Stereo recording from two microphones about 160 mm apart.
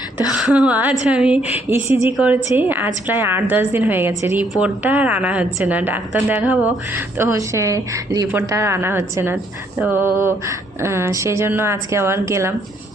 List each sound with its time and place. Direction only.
0.3 s a woman's voice: 5° right (ahead or behind)